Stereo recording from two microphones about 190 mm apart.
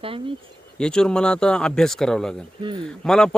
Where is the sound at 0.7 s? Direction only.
5° left (ahead or behind).